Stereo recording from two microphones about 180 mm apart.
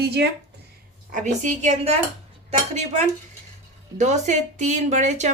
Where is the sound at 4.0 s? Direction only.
40° right (ahead or behind).